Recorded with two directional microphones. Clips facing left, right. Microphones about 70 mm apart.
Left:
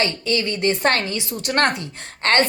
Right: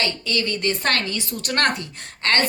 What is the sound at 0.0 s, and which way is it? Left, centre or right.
A woman's voice, left.